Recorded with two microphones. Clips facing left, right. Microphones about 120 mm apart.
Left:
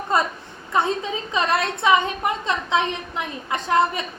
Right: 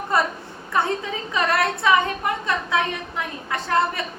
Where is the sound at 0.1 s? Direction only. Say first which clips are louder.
Even; 20° left (ahead or behind).